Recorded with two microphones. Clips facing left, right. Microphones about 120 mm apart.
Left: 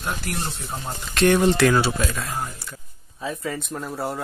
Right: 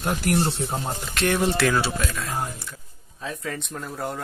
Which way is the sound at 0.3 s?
70° right (ahead or behind).